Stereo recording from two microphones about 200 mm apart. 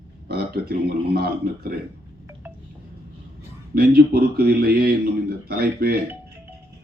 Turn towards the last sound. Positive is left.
turn(degrees=-50)  # may be behind; listen again after turning